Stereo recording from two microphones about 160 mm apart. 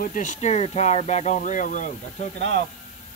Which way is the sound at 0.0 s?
55° left (ahead or behind).